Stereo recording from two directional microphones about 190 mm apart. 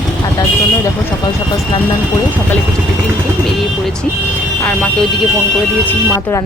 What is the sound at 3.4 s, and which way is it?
Speech, centre (ahead or behind).